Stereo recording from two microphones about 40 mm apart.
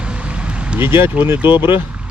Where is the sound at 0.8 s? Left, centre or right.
Right.